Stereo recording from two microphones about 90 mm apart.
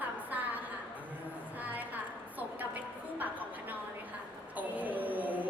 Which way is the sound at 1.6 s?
20° right (ahead or behind).